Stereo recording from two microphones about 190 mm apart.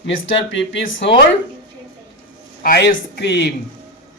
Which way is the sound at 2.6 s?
50° left (ahead or behind).